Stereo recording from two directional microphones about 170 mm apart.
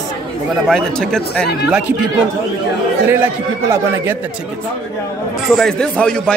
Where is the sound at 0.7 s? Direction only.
5° left (ahead or behind).